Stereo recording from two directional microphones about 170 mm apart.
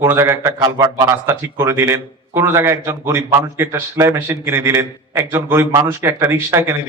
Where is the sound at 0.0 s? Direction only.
15° right (ahead or behind).